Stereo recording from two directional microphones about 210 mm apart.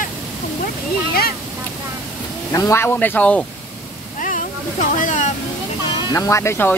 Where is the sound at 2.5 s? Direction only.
15° left (ahead or behind).